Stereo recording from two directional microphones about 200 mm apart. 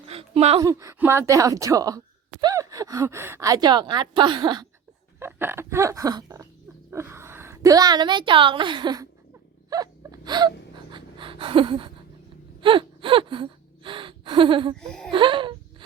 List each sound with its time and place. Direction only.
0.1 s a sound: 30° right (ahead or behind)
0.6 s a woman's voice: 15° right (ahead or behind)
9.6 s wail: 20° right (ahead or behind)
10.9 s gasp: 25° right (ahead or behind)
14.8 s speech: 5° left (ahead or behind)
15.1 s speech: 25° right (ahead or behind)